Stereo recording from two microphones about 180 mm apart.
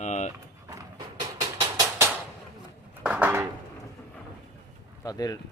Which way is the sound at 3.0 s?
10° right (ahead or behind).